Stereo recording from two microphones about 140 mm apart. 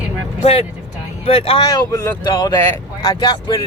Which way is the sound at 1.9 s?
20° left (ahead or behind).